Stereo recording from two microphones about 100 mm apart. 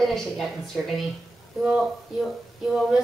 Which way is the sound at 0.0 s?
Centre (ahead or behind).